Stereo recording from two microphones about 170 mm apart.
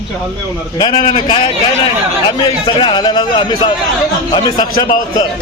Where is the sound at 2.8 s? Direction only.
25° left (ahead or behind).